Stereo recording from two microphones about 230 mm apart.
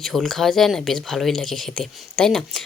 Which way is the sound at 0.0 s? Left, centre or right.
Centre.